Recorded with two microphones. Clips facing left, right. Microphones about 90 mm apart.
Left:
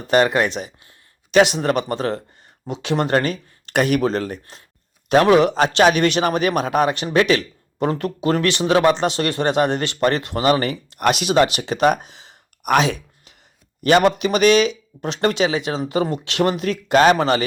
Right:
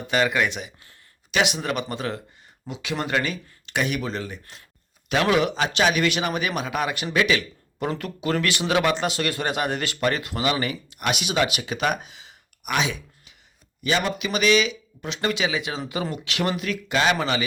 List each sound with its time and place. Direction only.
0.1 s a man's voice: 40° left (ahead or behind)
13.8 s a man's voice: 60° left (ahead or behind)
14.2 s a man's voice: 45° left (ahead or behind)